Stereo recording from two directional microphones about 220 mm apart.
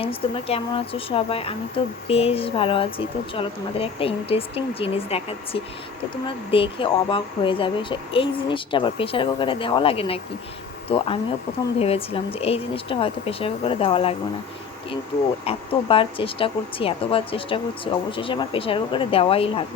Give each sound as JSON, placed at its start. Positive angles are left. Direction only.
{"t": 0.0, "sound": "speech", "side_deg": 25}
{"t": 15.4, "sound": "speech", "side_deg": 25}